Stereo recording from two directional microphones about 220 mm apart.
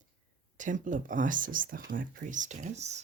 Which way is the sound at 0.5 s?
35° right (ahead or behind).